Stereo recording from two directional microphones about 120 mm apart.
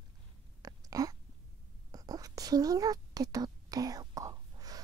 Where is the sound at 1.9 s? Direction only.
30° right (ahead or behind).